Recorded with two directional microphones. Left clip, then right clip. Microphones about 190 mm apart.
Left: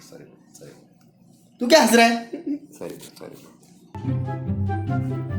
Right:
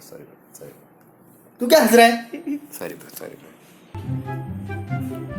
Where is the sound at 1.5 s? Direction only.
20° right (ahead or behind).